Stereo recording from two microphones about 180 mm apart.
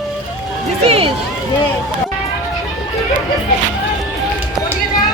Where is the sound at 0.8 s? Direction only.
35° right (ahead or behind).